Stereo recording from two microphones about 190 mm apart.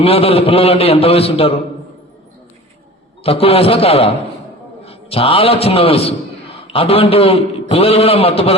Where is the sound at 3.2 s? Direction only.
30° left (ahead or behind).